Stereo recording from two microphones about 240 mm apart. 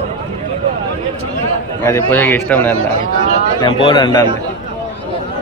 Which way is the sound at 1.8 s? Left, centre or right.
Centre.